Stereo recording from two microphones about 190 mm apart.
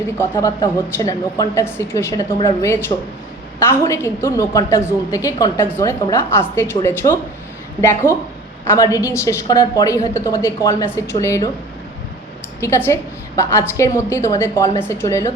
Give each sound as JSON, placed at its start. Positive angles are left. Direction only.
{"t": 0.2, "sound": "a woman's voice", "side_deg": 15}
{"t": 12.5, "sound": "a woman's voice", "side_deg": 15}